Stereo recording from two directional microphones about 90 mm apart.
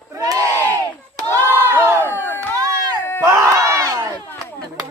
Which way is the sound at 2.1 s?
25° left (ahead or behind).